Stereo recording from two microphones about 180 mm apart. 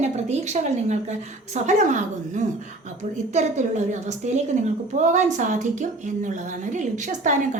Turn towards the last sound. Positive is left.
turn(degrees=-45)  # may be behind; listen again after turning